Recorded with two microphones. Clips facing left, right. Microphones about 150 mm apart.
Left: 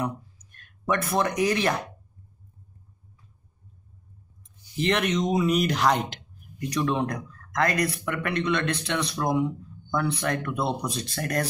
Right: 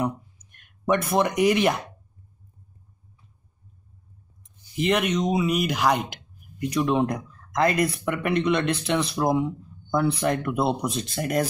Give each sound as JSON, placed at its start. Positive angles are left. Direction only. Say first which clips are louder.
{"t": 0.6, "sound": "speech", "louder": "right 4 dB", "side_deg": -20}
{"t": 4.7, "sound": "speech", "louder": "right 2 dB", "side_deg": -10}
{"t": 6.7, "sound": "speech", "louder": "right 3 dB", "side_deg": -20}